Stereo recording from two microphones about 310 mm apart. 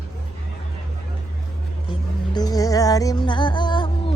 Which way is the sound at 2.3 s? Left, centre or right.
Centre.